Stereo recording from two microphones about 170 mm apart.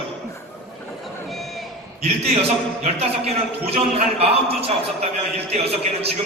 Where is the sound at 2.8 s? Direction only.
35° right (ahead or behind).